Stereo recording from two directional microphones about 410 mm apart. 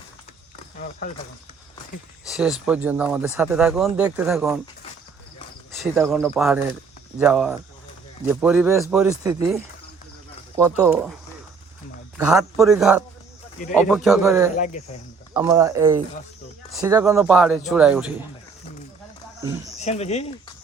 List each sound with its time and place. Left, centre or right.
0.8 s speech: centre
2.2 s speech: centre
5.7 s speech: centre
12.1 s speech: centre
14.5 s speech: centre
15.3 s speech: centre
19.4 s speech: centre
19.8 s speech: centre